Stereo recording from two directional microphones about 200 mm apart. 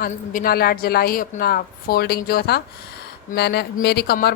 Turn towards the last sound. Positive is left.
turn(degrees=50)  # may be behind; listen again after turning